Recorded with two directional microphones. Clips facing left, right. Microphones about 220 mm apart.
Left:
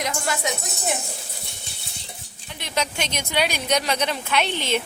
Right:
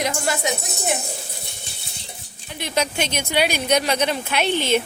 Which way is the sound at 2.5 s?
10° right (ahead or behind).